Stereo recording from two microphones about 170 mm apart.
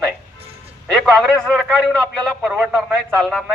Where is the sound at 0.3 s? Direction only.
35° right (ahead or behind).